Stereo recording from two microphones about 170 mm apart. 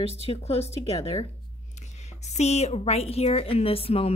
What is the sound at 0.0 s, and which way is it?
A woman's voice, 35° left (ahead or behind).